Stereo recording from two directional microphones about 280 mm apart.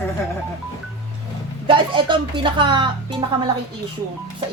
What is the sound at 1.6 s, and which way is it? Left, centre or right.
Speech, centre.